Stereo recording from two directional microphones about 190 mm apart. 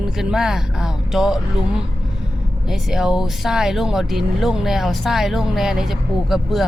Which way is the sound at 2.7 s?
5° right (ahead or behind).